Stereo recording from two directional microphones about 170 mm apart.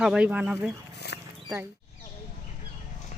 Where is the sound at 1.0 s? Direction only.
80° left.